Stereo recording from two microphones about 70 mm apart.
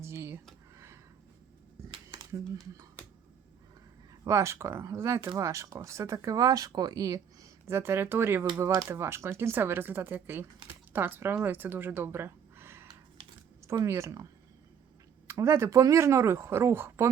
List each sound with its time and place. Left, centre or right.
0.0 s a sound: right
4.2 s speech: right
7.7 s speech: right
15.4 s speech: right